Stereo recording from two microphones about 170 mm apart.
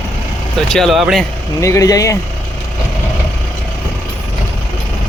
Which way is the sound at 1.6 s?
20° left (ahead or behind).